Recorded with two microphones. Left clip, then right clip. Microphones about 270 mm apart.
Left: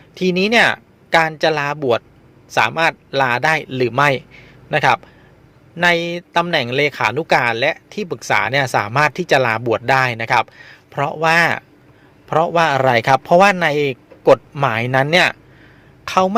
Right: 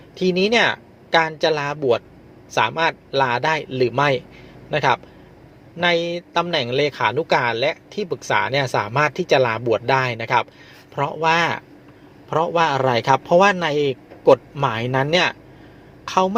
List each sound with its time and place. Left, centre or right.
0.1 s speech: left